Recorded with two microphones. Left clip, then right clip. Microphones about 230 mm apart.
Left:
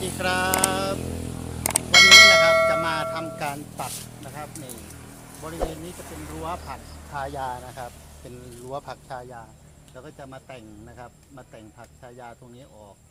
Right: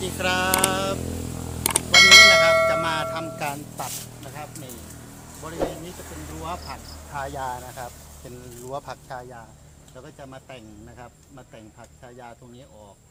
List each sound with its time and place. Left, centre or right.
0.2 s a sound: centre
1.6 s bell: centre
5.5 s speech: centre